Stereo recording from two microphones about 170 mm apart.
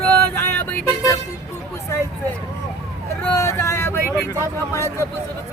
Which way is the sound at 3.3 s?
15° left (ahead or behind).